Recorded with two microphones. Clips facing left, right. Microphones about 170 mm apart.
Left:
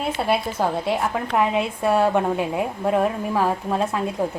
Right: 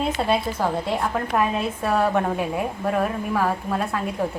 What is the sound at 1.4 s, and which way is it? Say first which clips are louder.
A woman's voice: left 3 dB; 15° left (ahead or behind).